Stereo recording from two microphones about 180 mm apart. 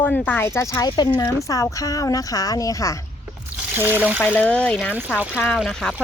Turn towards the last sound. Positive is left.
turn(degrees=0)  # may be behind; listen again after turning